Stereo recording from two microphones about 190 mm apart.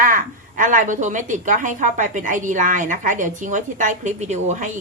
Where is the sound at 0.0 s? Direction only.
45° right (ahead or behind).